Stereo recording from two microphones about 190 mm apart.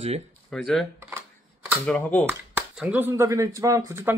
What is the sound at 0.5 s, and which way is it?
Speech, 5° left (ahead or behind).